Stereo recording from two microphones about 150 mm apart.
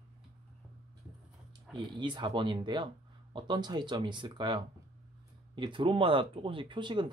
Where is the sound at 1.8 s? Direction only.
30° right (ahead or behind).